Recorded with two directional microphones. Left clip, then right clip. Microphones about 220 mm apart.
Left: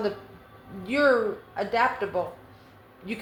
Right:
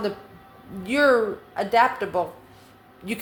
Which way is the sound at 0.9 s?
40° right (ahead or behind).